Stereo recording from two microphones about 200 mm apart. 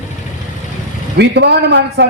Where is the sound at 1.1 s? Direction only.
55° right (ahead or behind).